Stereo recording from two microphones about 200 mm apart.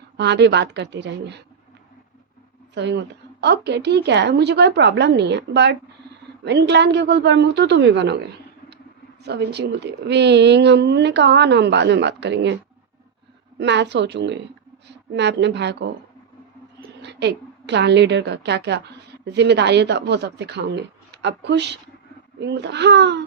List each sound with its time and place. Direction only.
0.2 s a woman's voice: 60° right (ahead or behind)
2.7 s a woman's voice: 60° right (ahead or behind)
13.6 s a woman's voice: 60° right (ahead or behind)
17.0 s a woman's voice: 60° right (ahead or behind)